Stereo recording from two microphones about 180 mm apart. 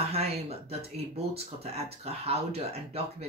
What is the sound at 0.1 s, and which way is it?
Speech, 35° right (ahead or behind).